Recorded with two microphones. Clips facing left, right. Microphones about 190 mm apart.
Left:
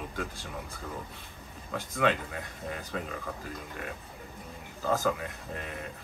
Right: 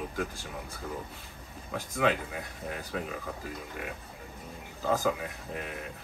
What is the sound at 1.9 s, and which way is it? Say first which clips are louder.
A man's voice: even; 5° right (ahead or behind).